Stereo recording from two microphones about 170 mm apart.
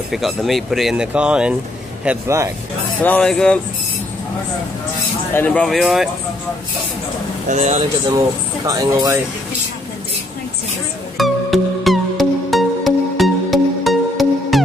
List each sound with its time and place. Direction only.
0.1 s speech: centre (ahead or behind)
2.0 s speech: 15° right (ahead or behind)
3.0 s speech: 10° left (ahead or behind)
5.3 s speech: 10° left (ahead or behind)
7.4 s speech: 45° right (ahead or behind)
8.6 s speech: 20° right (ahead or behind)
11.1 s music: centre (ahead or behind)